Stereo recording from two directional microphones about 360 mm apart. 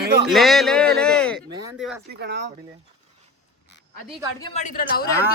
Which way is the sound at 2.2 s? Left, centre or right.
Right.